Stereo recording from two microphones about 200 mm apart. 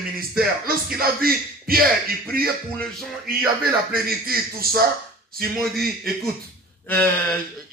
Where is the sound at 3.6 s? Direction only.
45° right (ahead or behind).